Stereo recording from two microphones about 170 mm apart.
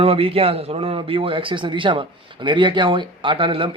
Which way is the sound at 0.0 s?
35° right (ahead or behind).